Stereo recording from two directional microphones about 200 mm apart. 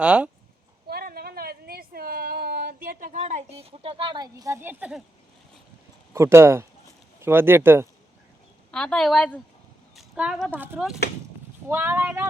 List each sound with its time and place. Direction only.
0.0 s a woman's voice: 5° right (ahead or behind)
0.9 s a sound: 50° right (ahead or behind); by 5.0 s 5° right (ahead or behind)
6.1 s speech: 15° right (ahead or behind)
8.7 s a woman's voice: 5° left (ahead or behind)